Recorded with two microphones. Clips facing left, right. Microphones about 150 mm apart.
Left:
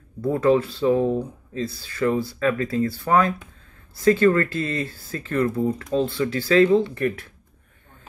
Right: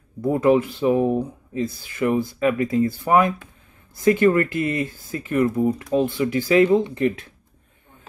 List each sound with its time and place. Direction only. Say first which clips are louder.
0.2 s speech: right 1 dB; 15° right (ahead or behind)